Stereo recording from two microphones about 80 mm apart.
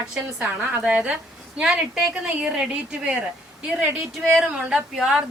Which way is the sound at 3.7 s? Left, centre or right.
Centre.